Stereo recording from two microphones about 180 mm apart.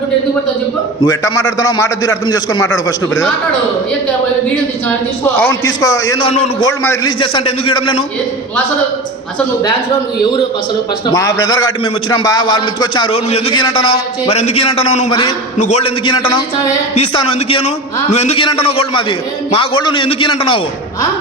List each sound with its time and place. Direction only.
1.0 s a man's voice: 20° left (ahead or behind)
5.2 s a man's voice: 15° left (ahead or behind)
6.6 s a man's voice: 20° left (ahead or behind)
7.2 s a man's voice: 30° left (ahead or behind)
11.0 s a man's voice: 20° left (ahead or behind)
14.3 s a man's voice: 35° left (ahead or behind)
16.0 s a man's voice: 30° left (ahead or behind)